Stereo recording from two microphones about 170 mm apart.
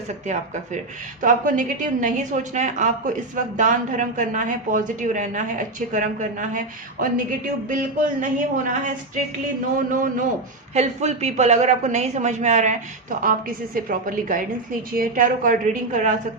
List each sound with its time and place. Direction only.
0.3 s speech: 45° right (ahead or behind)